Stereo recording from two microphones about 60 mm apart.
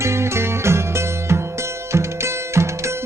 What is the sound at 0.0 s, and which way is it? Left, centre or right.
Music, right.